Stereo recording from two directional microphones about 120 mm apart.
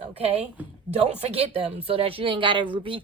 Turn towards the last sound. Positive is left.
turn(degrees=-45)  # may be behind; listen again after turning